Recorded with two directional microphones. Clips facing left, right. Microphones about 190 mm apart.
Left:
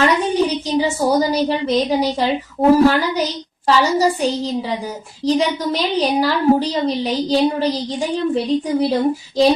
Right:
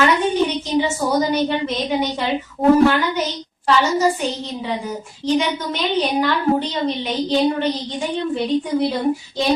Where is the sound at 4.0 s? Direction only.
35° left (ahead or behind).